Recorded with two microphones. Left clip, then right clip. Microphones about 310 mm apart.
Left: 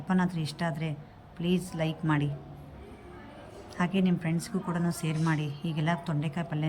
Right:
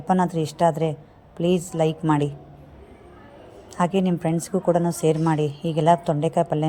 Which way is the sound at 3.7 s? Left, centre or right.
Centre.